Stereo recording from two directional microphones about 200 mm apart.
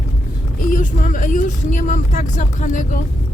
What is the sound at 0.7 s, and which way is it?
Speech, 40° left (ahead or behind).